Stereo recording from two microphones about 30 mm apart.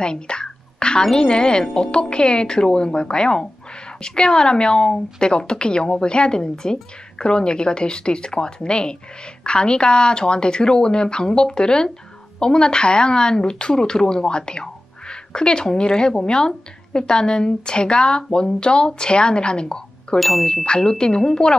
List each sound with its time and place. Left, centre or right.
0.0 s a sound: left
1.1 s speech: left
20.2 s ding: centre
20.6 s speech: left